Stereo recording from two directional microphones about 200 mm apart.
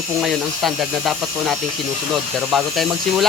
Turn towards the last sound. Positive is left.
turn(degrees=0)  # may be behind; listen again after turning